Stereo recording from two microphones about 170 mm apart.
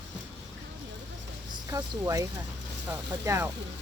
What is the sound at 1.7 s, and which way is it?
Speech, 20° right (ahead or behind).